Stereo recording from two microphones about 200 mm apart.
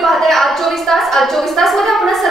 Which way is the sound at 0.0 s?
Centre (ahead or behind).